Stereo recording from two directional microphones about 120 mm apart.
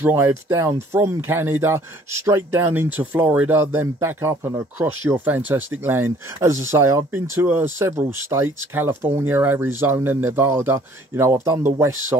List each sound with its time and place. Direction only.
0.0 s speech: 20° right (ahead or behind)
4.7 s speech: 15° right (ahead or behind)